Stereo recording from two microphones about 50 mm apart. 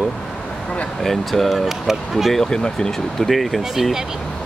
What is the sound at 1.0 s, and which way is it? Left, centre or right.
Speech, centre.